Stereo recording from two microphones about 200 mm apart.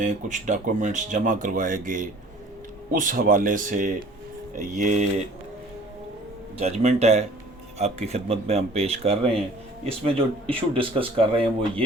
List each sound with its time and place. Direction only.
0.0 s speech: 40° right (ahead or behind)
6.6 s speech: 35° right (ahead or behind)